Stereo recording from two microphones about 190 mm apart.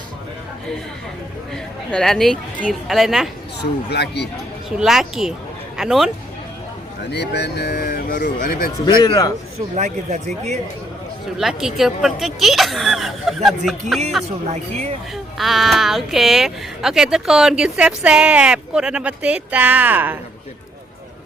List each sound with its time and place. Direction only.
1.5 s speech: centre (ahead or behind)
3.6 s speech: 60° left (ahead or behind)
4.8 s speech: centre (ahead or behind)
7.1 s speech: 60° left (ahead or behind)
9.0 s a man's voice: 25° left (ahead or behind)
9.6 s speech: 40° right (ahead or behind)
11.3 s speech: centre (ahead or behind)